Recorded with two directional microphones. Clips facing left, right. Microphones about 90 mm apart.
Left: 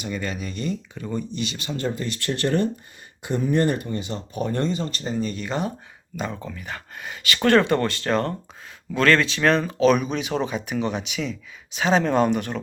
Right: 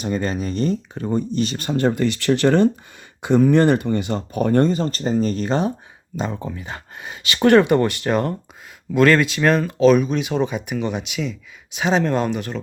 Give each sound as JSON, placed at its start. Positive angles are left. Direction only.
{"t": 0.0, "sound": "speech", "side_deg": -40}
{"t": 6.1, "sound": "speech", "side_deg": -25}